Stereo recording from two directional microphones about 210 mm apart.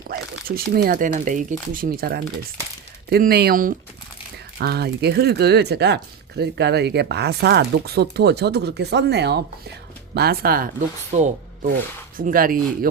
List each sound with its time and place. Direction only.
0.1 s speech: 45° right (ahead or behind)
11.1 s speech: 35° right (ahead or behind)